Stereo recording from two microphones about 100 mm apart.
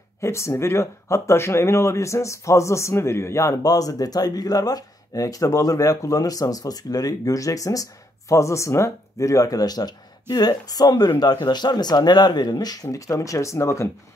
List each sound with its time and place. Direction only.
0.2 s speech: 30° left (ahead or behind)